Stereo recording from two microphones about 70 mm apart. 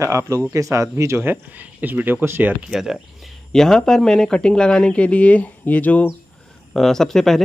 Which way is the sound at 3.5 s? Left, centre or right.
Centre.